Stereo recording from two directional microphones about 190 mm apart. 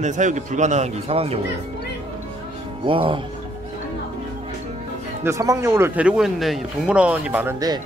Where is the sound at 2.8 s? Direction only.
25° right (ahead or behind).